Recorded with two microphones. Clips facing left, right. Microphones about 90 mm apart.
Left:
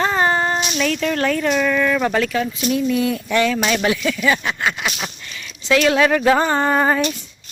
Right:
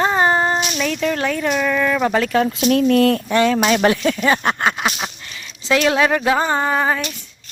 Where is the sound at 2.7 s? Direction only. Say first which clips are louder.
Right 5 dB; 65° right (ahead or behind).